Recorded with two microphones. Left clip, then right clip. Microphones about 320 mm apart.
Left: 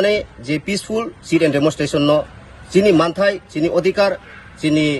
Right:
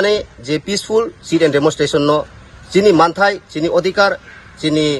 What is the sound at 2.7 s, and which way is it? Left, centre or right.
Speech, centre.